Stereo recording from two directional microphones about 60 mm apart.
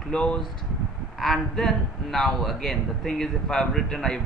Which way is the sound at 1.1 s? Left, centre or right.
Centre.